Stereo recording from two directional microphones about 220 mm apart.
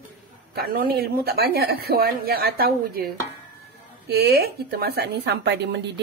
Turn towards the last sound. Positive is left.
turn(degrees=-50)  # may be behind; listen again after turning